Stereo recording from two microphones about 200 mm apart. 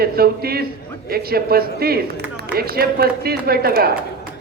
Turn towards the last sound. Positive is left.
turn(degrees=-50)  # may be behind; listen again after turning